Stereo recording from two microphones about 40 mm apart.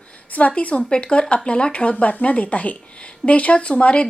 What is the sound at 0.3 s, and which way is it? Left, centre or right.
A woman's voice, left.